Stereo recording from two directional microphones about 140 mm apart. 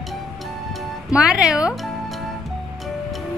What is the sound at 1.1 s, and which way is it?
Speech, 5° right (ahead or behind).